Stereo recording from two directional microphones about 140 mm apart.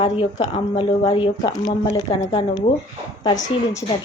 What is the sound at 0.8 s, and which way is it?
A woman's voice, 35° left (ahead or behind).